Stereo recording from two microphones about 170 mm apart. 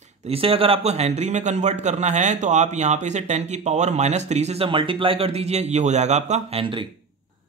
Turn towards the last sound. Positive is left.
turn(degrees=-30)  # may be behind; listen again after turning